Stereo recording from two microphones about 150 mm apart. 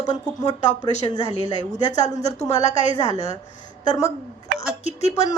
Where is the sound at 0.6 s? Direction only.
50° left (ahead or behind).